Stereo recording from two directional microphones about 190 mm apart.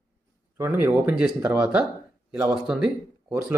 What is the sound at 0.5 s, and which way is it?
Speech, 10° right (ahead or behind).